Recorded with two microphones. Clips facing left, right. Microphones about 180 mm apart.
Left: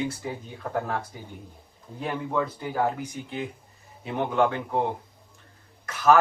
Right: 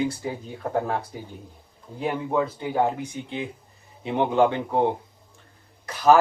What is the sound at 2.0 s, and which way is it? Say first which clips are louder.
Speech: right 3 dB; 25° right (ahead or behind).